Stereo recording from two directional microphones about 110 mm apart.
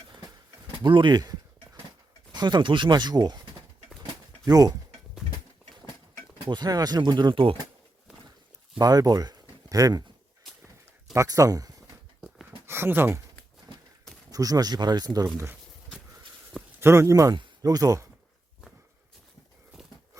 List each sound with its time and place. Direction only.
0.9 s speech: 45° right (ahead or behind)
4.4 s speech: 35° right (ahead or behind)
6.5 s speech: 40° right (ahead or behind)
8.8 s speech: 35° right (ahead or behind)
11.1 s speech: 30° right (ahead or behind)
12.6 s speech: 20° right (ahead or behind)
14.3 s speech: 35° right (ahead or behind)
16.8 s speech: 25° right (ahead or behind)